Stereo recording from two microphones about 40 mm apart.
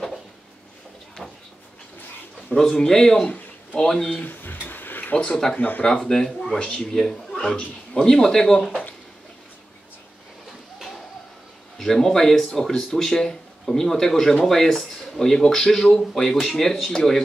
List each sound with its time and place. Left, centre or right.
2.5 s speech: centre
4.2 s a sound: left
5.1 s a man's voice: left
5.6 s speech: left
6.0 s speech: centre
7.5 s a man's voice: left
8.1 s speech: centre
11.8 s speech: centre